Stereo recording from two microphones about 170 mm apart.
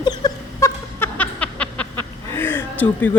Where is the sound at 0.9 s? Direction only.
10° left (ahead or behind).